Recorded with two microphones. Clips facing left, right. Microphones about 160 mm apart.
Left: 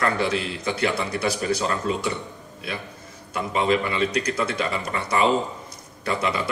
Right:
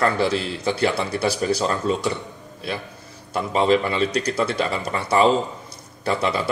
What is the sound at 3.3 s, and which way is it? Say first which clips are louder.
A man's voice: right 3 dB; 35° right (ahead or behind).